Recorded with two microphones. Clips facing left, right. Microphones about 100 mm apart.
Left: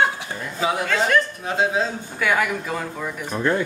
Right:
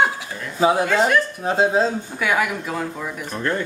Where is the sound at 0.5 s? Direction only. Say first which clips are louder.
Right 6 dB; 35° right (ahead or behind).